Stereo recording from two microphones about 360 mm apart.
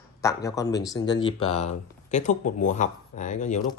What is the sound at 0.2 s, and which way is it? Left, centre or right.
Speech, centre.